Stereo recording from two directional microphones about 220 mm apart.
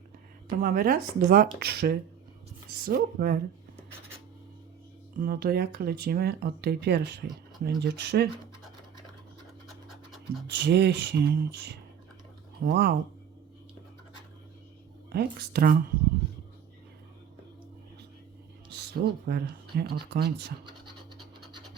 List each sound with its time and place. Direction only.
0.6 s speech: 40° right (ahead or behind)
5.1 s speech: 40° right (ahead or behind)
10.4 s speech: 50° right (ahead or behind)
15.1 s speech: 45° right (ahead or behind)
18.7 s speech: 50° right (ahead or behind)